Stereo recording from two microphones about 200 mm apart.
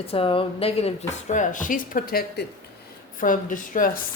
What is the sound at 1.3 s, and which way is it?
A woman's voice, 40° left (ahead or behind).